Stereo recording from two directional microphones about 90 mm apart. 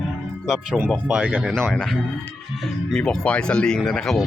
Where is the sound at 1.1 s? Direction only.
15° right (ahead or behind).